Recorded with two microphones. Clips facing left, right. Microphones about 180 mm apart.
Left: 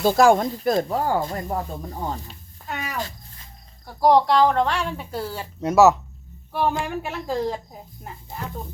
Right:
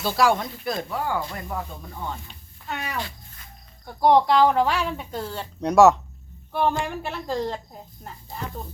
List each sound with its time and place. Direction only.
0.0 s speech: 45° left (ahead or behind)
2.6 s a sound: 5° left (ahead or behind)
3.8 s speech: centre (ahead or behind)